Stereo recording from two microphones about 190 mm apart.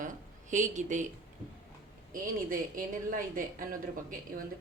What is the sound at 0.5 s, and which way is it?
Speech, 40° right (ahead or behind).